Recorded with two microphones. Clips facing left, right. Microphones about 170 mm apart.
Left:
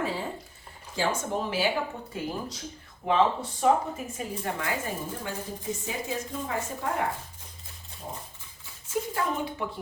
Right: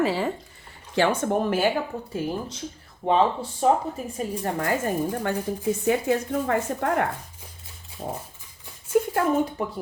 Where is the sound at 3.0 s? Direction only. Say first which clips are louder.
Right 3 dB; 35° right (ahead or behind).